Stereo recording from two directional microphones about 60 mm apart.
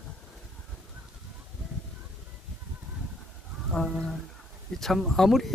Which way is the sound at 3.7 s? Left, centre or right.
Centre.